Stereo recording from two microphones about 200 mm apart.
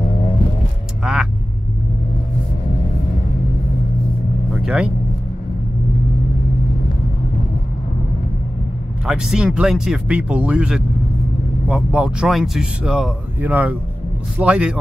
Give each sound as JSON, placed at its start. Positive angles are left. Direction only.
{"t": 1.0, "sound": "vehicle", "side_deg": -5}
{"t": 4.6, "sound": "vehicle", "side_deg": -5}
{"t": 9.0, "sound": "a man's voice", "side_deg": -5}